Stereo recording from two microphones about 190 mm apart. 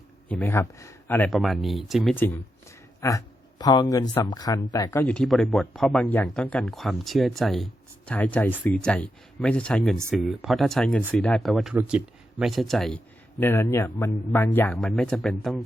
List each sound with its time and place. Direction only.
0.3 s speech: 10° left (ahead or behind)
2.1 s speech: 10° left (ahead or behind)
13.4 s speech: 15° left (ahead or behind)